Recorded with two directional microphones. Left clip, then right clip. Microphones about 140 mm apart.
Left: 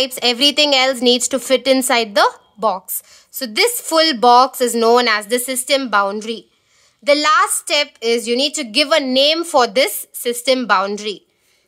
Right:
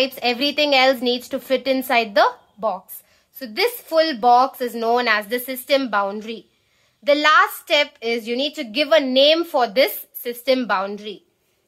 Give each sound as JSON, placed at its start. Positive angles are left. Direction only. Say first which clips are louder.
{"t": 0.0, "sound": "a woman's voice", "louder": "left 5 dB", "side_deg": 50}